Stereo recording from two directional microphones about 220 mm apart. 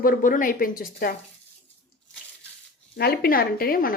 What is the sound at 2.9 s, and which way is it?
Speech, 45° left (ahead or behind).